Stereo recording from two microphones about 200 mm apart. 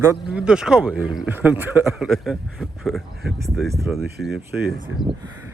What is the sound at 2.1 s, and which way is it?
A man's voice, centre (ahead or behind).